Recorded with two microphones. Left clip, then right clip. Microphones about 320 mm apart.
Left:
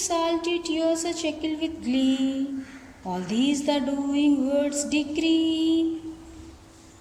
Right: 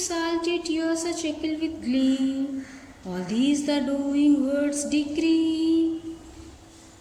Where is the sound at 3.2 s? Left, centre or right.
Centre.